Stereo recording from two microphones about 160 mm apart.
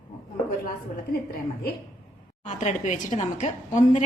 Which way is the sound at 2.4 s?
50° left (ahead or behind).